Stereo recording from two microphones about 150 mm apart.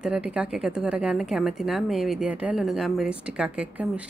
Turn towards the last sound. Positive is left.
turn(degrees=-5)  # may be behind; listen again after turning